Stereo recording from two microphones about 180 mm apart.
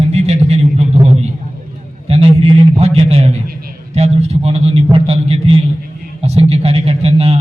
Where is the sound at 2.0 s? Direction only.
35° right (ahead or behind).